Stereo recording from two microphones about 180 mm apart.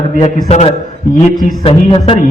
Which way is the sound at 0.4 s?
35° left (ahead or behind).